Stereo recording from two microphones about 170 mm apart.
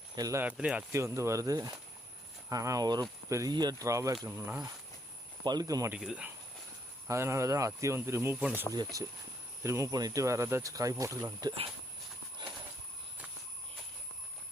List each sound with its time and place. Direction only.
0.2 s speech: 20° right (ahead or behind)
0.4 s speech: 5° right (ahead or behind)
5.9 s speech: 5° right (ahead or behind)
7.1 s speech: 15° right (ahead or behind)
8.7 s speech: 20° right (ahead or behind)
12.4 s train: 25° right (ahead or behind)